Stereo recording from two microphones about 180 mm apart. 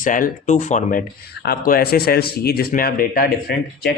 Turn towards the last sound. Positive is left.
turn(degrees=60)  # may be behind; listen again after turning